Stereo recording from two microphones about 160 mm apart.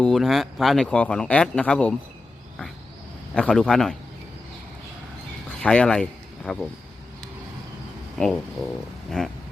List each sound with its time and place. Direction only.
0.0 s speech: centre (ahead or behind)
3.3 s speech: 5° left (ahead or behind)
5.6 s speech: 5° left (ahead or behind)
8.2 s speech: 5° left (ahead or behind)
9.0 s a sound: 5° left (ahead or behind)